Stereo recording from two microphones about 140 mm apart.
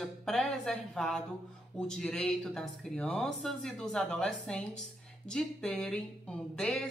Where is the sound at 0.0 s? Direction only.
5° left (ahead or behind).